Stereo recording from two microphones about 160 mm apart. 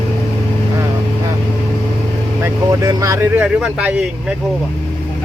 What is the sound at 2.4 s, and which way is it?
Speech, 20° right (ahead or behind).